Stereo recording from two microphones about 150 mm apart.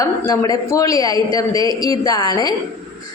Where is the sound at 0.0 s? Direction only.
25° left (ahead or behind).